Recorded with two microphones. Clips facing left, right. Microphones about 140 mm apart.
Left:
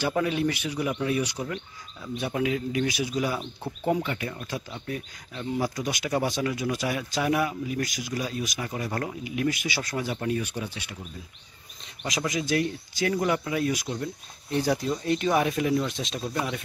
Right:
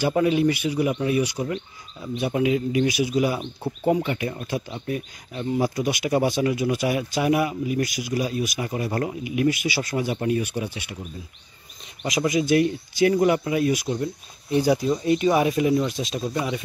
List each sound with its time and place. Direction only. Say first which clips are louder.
0.0 s speech: right 6 dB; 10° right (ahead or behind)
5.8 s speech: right 5 dB; 10° right (ahead or behind)
12.0 s speech: right 7 dB; 10° right (ahead or behind)